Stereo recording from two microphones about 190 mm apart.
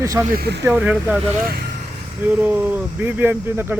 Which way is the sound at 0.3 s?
55° right (ahead or behind).